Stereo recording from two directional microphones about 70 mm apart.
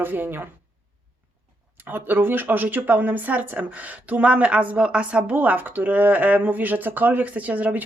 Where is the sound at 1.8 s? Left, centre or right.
Right.